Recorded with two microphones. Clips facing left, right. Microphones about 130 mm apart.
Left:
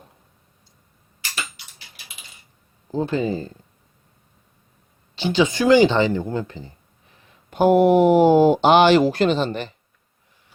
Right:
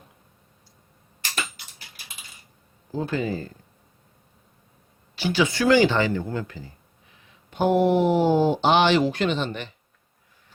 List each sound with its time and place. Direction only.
2.9 s speech: 25° left (ahead or behind)
5.1 s speech: 20° left (ahead or behind)
7.5 s speech: 50° left (ahead or behind)